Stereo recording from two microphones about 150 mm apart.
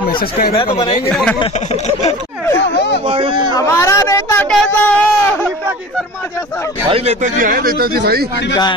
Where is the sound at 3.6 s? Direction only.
20° left (ahead or behind).